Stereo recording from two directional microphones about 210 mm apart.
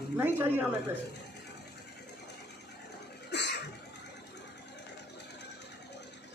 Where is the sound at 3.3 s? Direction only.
55° left (ahead or behind).